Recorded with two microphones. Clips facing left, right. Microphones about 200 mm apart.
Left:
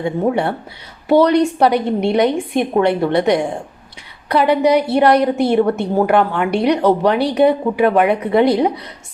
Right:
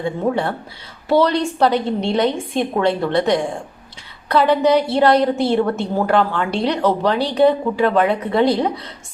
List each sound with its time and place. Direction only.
0.0 s a woman's voice: 20° left (ahead or behind)